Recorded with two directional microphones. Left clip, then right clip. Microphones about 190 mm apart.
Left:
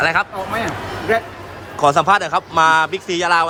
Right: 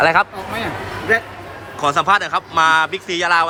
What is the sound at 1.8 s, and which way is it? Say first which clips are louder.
Speech: left 2 dB; 20° left (ahead or behind).